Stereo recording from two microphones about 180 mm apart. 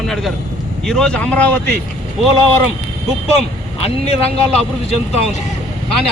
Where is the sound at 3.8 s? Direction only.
35° left (ahead or behind).